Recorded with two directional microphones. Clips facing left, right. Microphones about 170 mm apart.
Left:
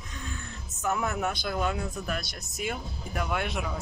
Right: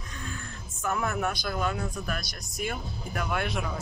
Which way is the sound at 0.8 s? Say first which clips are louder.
Even; 20° left (ahead or behind).